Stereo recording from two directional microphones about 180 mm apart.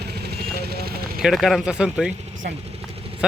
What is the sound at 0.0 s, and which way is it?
Vehicle, 65° right (ahead or behind).